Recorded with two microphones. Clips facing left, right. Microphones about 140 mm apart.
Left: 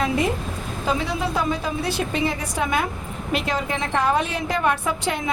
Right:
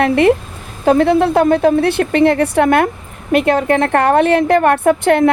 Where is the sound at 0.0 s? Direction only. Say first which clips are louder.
Right 11 dB; 65° right (ahead or behind).